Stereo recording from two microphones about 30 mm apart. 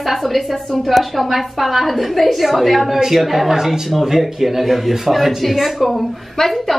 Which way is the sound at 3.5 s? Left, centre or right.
Centre.